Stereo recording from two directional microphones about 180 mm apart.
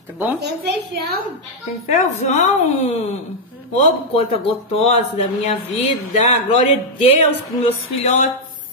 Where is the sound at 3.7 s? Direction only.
35° left (ahead or behind).